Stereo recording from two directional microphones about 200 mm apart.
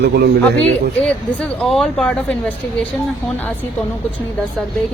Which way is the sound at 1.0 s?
5° left (ahead or behind).